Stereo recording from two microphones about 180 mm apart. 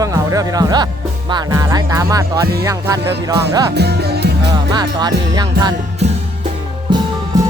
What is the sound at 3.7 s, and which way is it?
Music, 65° right (ahead or behind).